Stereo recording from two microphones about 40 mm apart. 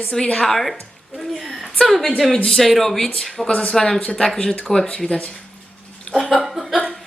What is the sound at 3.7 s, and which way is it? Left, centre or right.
Speech, centre.